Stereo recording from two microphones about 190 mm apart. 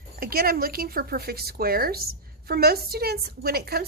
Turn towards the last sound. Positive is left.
turn(degrees=-55)  # may be behind; listen again after turning